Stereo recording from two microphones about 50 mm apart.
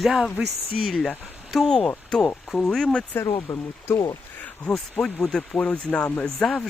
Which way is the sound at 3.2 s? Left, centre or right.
Left.